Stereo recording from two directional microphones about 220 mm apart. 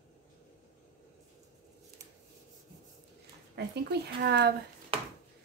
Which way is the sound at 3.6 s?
50° right (ahead or behind).